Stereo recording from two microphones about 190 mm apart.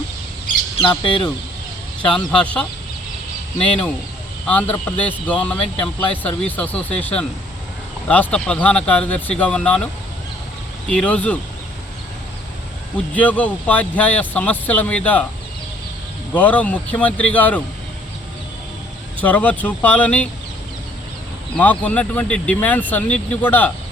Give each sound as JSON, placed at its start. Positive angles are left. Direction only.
{"t": 0.8, "sound": "speech", "side_deg": 25}
{"t": 2.0, "sound": "speech", "side_deg": 5}
{"t": 4.7, "sound": "speech", "side_deg": 10}
{"t": 13.1, "sound": "speech", "side_deg": 10}
{"t": 16.3, "sound": "speech", "side_deg": 10}
{"t": 19.2, "sound": "speech", "side_deg": 10}
{"t": 21.5, "sound": "speech", "side_deg": 10}